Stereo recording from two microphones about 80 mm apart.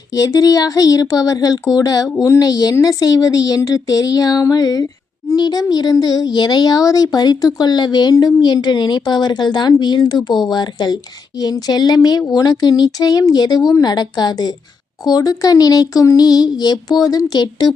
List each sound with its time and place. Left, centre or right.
0.1 s a woman's voice: left